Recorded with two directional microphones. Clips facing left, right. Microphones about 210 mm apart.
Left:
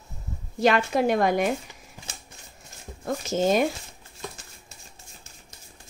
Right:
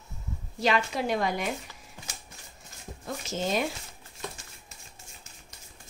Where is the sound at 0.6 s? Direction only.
50° left (ahead or behind).